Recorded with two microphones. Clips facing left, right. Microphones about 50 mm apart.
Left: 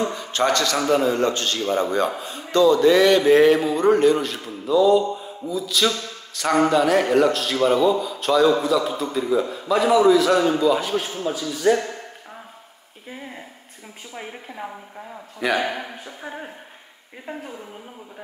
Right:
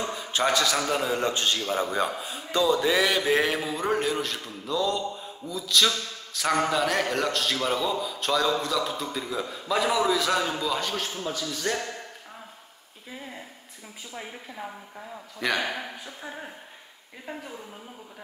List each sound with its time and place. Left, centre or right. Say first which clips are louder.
0.1 s a sound: left 4 dB; centre
0.7 s a man's voice: left 7 dB; centre
15.4 s a man's voice: left 5 dB; centre
17.3 s a woman's voice: left 4 dB; left